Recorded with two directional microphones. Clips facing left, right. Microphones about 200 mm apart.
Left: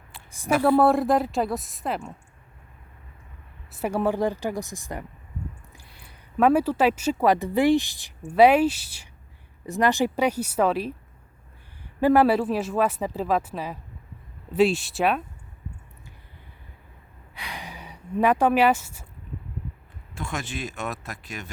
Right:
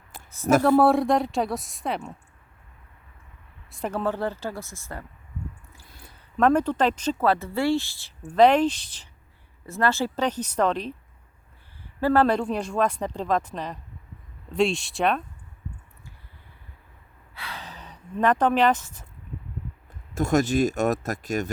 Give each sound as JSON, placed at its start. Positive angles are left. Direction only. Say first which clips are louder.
{"t": 0.3, "sound": "speech", "louder": "right 10 dB", "side_deg": 15}
{"t": 0.8, "sound": "a woman's voice", "louder": "even", "side_deg": 0}
{"t": 3.7, "sound": "speech", "louder": "left 3 dB", "side_deg": 10}
{"t": 6.3, "sound": "speech", "louder": "left 1 dB", "side_deg": 10}
{"t": 11.9, "sound": "a woman's voice", "louder": "left 2 dB", "side_deg": 15}
{"t": 17.3, "sound": "a sound", "louder": "left 1 dB", "side_deg": 15}
{"t": 20.1, "sound": "speech", "louder": "right 12 dB", "side_deg": -40}